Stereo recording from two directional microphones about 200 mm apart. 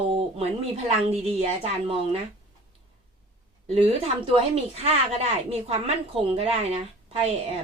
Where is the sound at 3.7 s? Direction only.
30° right (ahead or behind).